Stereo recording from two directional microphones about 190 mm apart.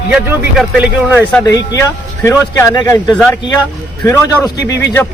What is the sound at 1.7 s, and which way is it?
Speech, 15° left (ahead or behind).